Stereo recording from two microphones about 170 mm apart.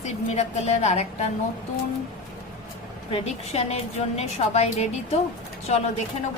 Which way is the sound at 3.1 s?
40° left (ahead or behind).